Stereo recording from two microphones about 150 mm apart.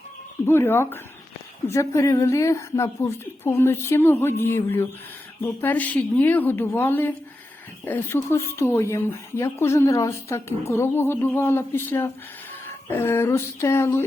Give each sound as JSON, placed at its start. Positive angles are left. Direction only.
{"t": 0.4, "sound": "speech", "side_deg": 15}